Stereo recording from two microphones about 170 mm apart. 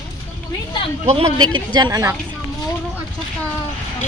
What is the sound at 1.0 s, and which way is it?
Speech, 35° right (ahead or behind).